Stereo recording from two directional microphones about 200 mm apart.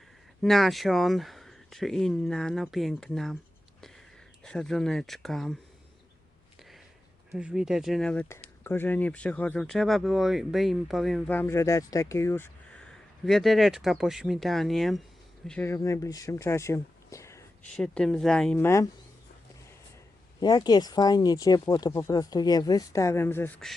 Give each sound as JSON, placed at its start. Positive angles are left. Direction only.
{"t": 0.4, "sound": "speech", "side_deg": 0}
{"t": 4.4, "sound": "speech", "side_deg": 5}
{"t": 7.3, "sound": "speech", "side_deg": -5}
{"t": 12.9, "sound": "speech", "side_deg": 0}
{"t": 20.4, "sound": "speech", "side_deg": 20}